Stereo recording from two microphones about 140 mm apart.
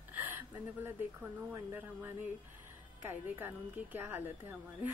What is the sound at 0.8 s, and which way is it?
Speech, 15° right (ahead or behind).